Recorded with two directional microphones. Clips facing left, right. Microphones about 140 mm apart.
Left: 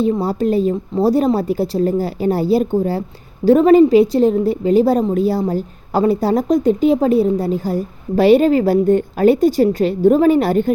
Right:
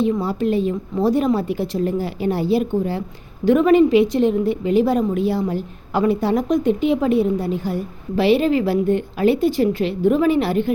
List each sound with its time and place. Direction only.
0.0 s a woman's voice: 35° left (ahead or behind)